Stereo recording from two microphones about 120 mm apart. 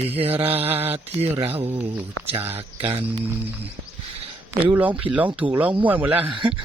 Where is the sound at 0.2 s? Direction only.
55° right (ahead or behind).